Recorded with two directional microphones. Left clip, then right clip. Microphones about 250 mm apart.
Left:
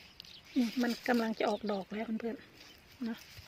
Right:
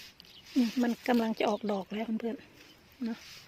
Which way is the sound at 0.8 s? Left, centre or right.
Centre.